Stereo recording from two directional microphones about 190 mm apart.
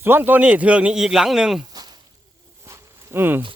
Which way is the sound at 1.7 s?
20° right (ahead or behind).